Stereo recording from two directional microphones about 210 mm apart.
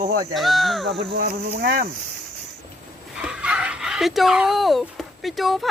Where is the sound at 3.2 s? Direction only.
5° right (ahead or behind).